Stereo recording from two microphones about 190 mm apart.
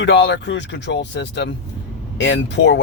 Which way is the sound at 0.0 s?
70° left (ahead or behind).